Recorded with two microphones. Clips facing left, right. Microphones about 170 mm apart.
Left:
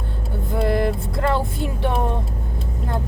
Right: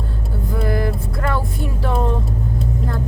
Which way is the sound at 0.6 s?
25° left (ahead or behind).